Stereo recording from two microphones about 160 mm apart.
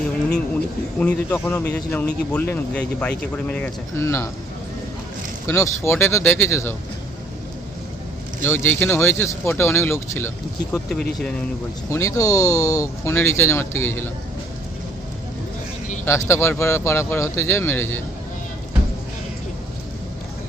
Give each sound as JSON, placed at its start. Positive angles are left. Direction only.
{"t": 0.9, "sound": "speech", "side_deg": 10}
{"t": 5.5, "sound": "speech", "side_deg": 15}
{"t": 8.4, "sound": "speech", "side_deg": 15}
{"t": 11.9, "sound": "speech", "side_deg": 20}
{"t": 16.0, "sound": "speech", "side_deg": 15}